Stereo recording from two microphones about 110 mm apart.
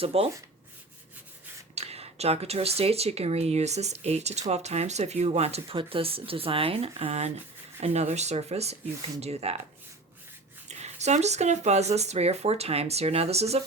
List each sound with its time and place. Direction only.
0.0 s speech: 60° right (ahead or behind)
1.7 s speech: 70° right (ahead or behind)
10.7 s speech: 90° right; by 13.6 s 70° right (ahead or behind)